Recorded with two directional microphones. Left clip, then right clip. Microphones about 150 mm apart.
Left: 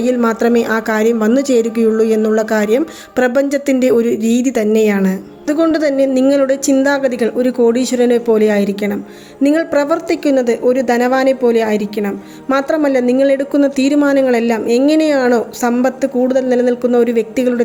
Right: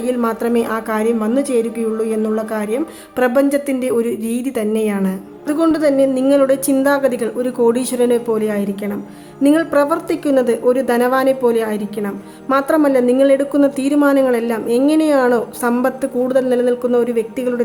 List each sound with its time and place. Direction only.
0.0 s a woman's voice: 20° left (ahead or behind)
5.5 s a woman's voice: 20° left (ahead or behind)